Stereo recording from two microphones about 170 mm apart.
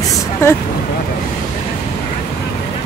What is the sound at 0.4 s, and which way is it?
Speech, 15° left (ahead or behind).